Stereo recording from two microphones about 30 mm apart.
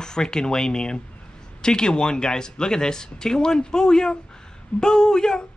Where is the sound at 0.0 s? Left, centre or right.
Left.